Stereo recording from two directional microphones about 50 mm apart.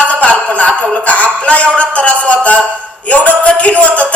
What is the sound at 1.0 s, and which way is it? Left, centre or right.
A man's voice, left.